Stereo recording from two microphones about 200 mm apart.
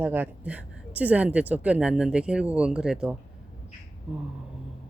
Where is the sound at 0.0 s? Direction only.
10° right (ahead or behind).